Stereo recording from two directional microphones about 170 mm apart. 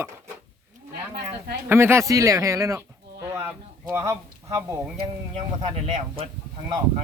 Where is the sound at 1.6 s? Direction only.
15° right (ahead or behind).